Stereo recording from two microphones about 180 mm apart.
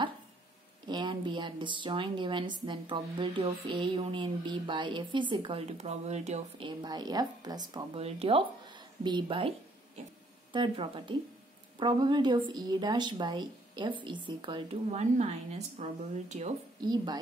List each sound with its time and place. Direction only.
0.8 s a woman's voice: 25° right (ahead or behind)
6.8 s a woman's voice: 25° right (ahead or behind)
10.5 s a woman's voice: 25° right (ahead or behind)
16.8 s a woman's voice: 25° right (ahead or behind)